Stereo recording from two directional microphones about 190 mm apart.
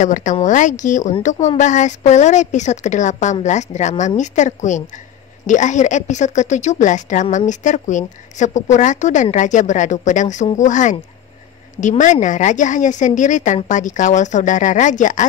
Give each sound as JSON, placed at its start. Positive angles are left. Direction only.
{"t": 0.0, "sound": "a woman's voice", "side_deg": 40}